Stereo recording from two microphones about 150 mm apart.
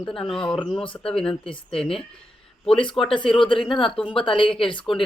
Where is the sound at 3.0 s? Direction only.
40° left (ahead or behind).